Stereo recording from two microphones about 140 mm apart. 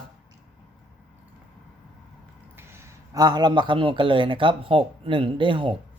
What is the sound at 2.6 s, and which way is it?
A man's voice, 20° right (ahead or behind).